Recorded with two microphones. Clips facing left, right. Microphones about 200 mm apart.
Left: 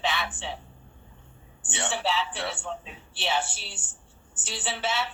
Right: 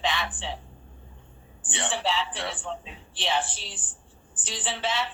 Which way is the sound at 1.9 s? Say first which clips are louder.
Even; 5° left (ahead or behind).